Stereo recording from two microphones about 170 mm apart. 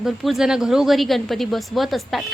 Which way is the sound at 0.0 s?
5° right (ahead or behind).